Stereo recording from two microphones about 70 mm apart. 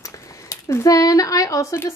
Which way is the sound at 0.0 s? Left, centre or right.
Left.